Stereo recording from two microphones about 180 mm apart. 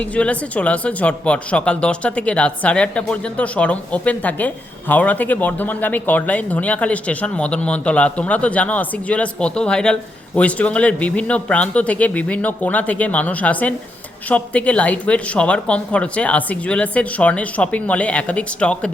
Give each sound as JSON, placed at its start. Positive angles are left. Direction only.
{"t": 0.0, "sound": "speech", "side_deg": 5}